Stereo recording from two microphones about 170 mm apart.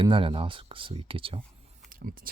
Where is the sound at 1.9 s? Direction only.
55° right (ahead or behind).